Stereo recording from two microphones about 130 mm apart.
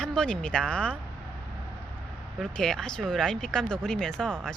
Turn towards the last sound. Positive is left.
turn(degrees=5)  # may be behind; listen again after turning